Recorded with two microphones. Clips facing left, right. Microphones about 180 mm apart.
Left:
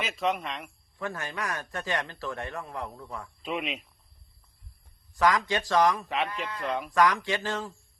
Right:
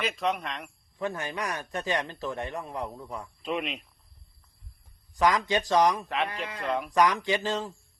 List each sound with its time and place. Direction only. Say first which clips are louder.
0.0 s speech: even; centre (ahead or behind)
0.9 s a man's voice: right 3 dB; 20° right (ahead or behind)
3.4 s speech: right 1 dB; centre (ahead or behind)
5.1 s a man's voice: right 1 dB; 20° right (ahead or behind)
6.6 s speech: right 2 dB; centre (ahead or behind)
6.9 s a man's voice: even; 20° right (ahead or behind)